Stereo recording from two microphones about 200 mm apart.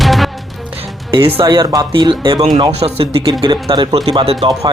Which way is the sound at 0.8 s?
25° right (ahead or behind).